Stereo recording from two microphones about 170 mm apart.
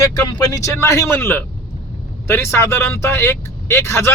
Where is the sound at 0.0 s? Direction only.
20° left (ahead or behind).